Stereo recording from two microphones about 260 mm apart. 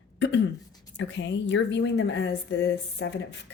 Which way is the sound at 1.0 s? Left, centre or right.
Left.